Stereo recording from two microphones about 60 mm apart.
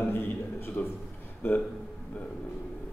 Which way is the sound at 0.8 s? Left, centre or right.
Left.